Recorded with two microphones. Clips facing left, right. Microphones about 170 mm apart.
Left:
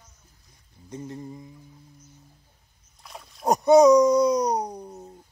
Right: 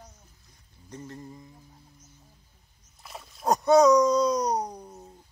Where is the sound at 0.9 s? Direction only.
15° left (ahead or behind).